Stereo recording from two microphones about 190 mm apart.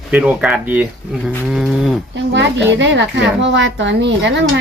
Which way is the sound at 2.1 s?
70° right (ahead or behind).